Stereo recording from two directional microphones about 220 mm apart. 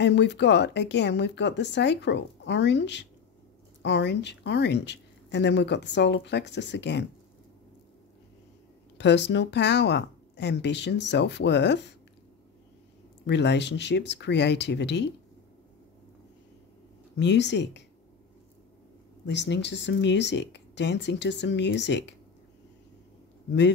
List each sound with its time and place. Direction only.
0.0 s speech: 50° left (ahead or behind)
8.9 s speech: 50° left (ahead or behind)
13.3 s speech: 50° left (ahead or behind)
17.2 s speech: 50° left (ahead or behind)
19.2 s speech: 50° left (ahead or behind)